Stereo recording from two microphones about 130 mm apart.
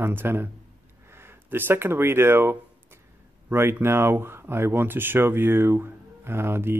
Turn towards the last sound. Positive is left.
turn(degrees=-20)  # may be behind; listen again after turning